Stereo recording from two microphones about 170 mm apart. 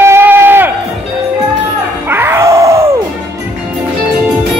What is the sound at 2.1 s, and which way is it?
Music, 15° right (ahead or behind).